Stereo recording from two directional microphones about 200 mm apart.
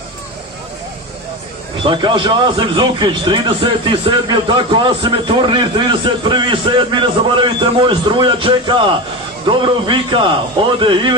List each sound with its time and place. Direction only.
1.8 s a man's voice: 25° right (ahead or behind)